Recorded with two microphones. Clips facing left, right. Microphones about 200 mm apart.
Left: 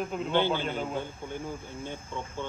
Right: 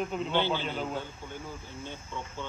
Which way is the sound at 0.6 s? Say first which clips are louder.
Left 2 dB; 50° left (ahead or behind).